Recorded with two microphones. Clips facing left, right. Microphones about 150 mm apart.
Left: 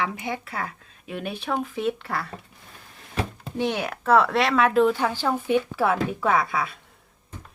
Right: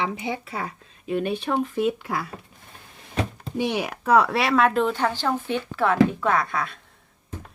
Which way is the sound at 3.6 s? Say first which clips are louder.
Even; 10° right (ahead or behind).